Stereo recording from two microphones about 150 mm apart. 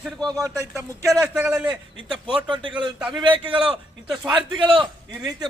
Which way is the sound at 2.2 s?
30° right (ahead or behind).